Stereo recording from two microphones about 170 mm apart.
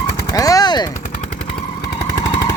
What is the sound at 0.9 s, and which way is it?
Machine gun, 45° left (ahead or behind).